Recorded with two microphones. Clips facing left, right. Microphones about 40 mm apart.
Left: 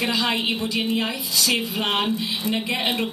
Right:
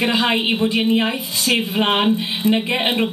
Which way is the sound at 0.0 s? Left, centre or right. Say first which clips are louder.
Right 5 dB; right.